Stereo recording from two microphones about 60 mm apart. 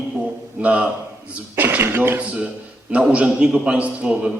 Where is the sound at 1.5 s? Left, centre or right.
Right.